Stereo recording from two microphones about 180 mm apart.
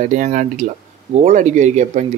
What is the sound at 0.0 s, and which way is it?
Speech, 45° right (ahead or behind).